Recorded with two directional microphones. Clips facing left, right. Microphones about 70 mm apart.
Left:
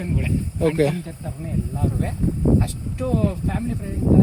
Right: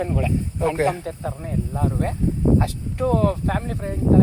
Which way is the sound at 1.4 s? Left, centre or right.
Right.